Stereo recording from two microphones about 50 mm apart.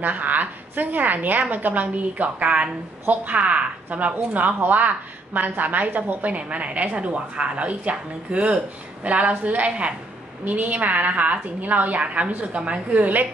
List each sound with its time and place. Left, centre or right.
0.0 s a woman's voice: right